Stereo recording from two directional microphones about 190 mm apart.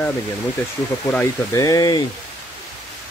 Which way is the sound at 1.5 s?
20° left (ahead or behind).